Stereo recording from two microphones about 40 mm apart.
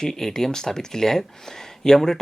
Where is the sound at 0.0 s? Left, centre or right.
Centre.